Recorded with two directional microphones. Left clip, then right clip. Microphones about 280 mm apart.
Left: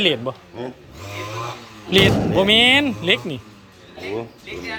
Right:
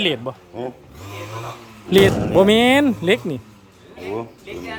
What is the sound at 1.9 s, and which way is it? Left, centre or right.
Speech, right.